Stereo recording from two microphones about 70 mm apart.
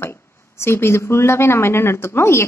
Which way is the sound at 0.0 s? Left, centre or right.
Left.